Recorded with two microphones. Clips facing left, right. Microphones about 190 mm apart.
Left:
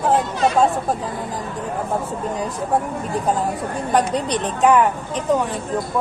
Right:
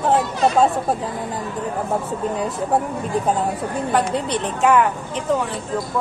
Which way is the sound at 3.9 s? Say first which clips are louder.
Left 2 dB; 15° left (ahead or behind).